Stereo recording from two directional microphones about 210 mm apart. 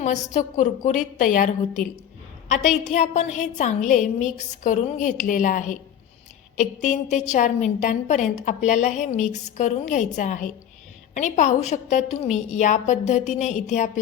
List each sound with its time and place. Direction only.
0.0 s a woman's voice: 35° left (ahead or behind)